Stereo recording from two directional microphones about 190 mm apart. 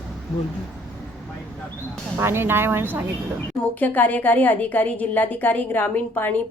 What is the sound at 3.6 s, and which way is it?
Speech, 10° left (ahead or behind).